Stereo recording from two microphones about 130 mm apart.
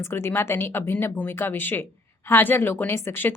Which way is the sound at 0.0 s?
20° left (ahead or behind).